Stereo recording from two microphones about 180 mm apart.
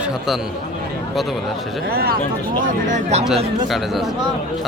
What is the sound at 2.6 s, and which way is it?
Speech, 40° right (ahead or behind).